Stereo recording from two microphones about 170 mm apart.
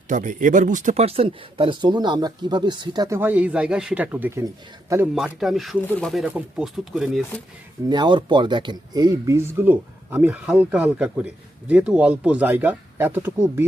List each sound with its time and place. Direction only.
0.1 s speech: 50° right (ahead or behind); by 3.2 s 25° right (ahead or behind)
3.2 s speech: 10° right (ahead or behind)
5.1 s speech: centre (ahead or behind)
7.9 s speech: 25° right (ahead or behind)